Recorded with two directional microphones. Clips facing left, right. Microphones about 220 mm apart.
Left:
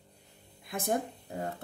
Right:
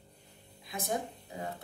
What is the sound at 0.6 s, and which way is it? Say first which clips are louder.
Speech: left 4 dB; 55° left (ahead or behind).